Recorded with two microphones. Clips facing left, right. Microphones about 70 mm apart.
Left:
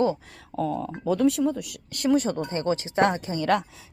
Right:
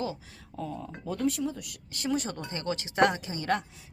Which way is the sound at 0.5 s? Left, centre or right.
Left.